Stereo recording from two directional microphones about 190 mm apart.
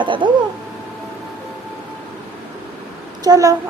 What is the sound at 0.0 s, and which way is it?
Speech, 25° right (ahead or behind).